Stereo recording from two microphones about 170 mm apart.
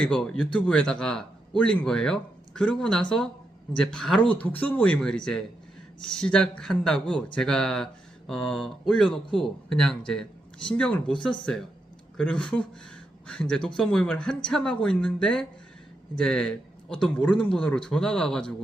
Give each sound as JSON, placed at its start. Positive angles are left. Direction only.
{"t": 0.0, "sound": "a man's voice", "side_deg": 5}